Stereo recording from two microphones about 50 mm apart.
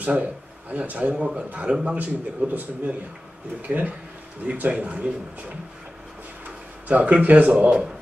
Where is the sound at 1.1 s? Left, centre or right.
Right.